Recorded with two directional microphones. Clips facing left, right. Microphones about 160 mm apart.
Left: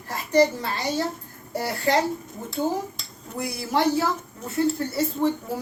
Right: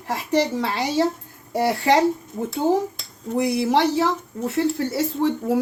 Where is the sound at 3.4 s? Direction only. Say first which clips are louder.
Right 7 dB; 80° right.